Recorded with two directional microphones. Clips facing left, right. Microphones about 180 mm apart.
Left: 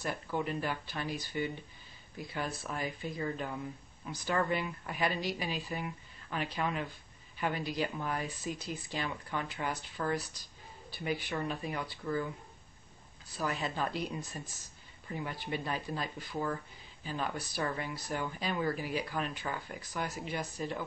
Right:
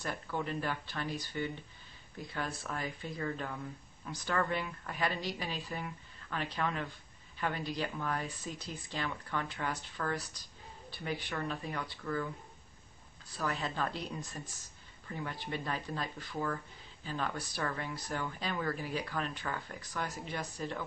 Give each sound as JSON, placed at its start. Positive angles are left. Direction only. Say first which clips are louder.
{"t": 0.0, "sound": "speech", "louder": "left 2 dB", "side_deg": 10}
{"t": 13.4, "sound": "speech", "louder": "left 1 dB", "side_deg": 10}